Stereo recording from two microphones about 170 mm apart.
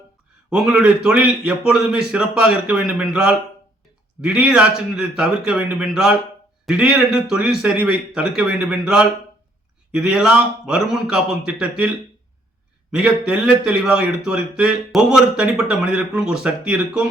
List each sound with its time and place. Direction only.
0.5 s speech: 5° right (ahead or behind)
12.9 s speech: 5° right (ahead or behind)